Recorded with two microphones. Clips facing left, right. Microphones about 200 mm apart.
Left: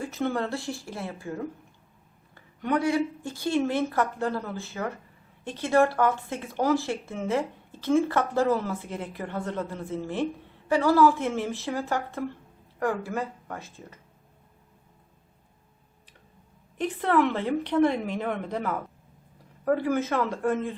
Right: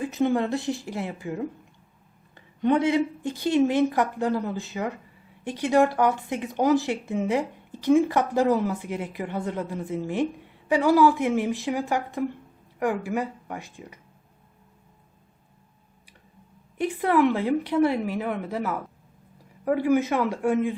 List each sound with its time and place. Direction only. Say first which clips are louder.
0.0 s speech: right 5 dB; 15° right (ahead or behind)
16.7 s speech: right 2 dB; 10° right (ahead or behind)